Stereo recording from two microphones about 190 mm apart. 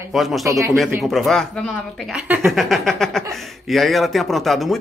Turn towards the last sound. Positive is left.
turn(degrees=0)  # may be behind; listen again after turning